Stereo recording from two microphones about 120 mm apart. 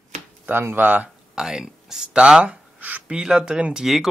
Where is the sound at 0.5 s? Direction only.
15° right (ahead or behind).